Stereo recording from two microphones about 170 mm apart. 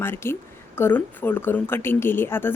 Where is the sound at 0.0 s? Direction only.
15° left (ahead or behind).